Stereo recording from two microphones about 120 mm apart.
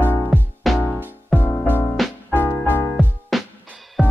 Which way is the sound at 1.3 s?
15° left (ahead or behind).